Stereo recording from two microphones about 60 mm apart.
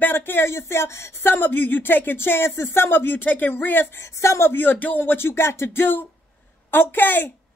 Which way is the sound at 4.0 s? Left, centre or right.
Left.